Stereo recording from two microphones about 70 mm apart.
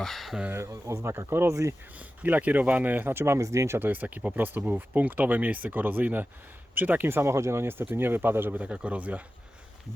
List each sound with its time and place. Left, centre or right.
0.0 s speech: centre
0.5 s speech: right
2.0 s speech: right
3.3 s speech: right
3.8 s speech: right